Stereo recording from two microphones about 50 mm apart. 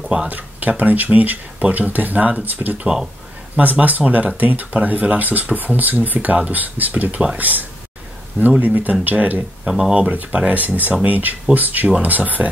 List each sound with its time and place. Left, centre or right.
0.3 s speech: right
9.7 s speech: centre
10.0 s speech: right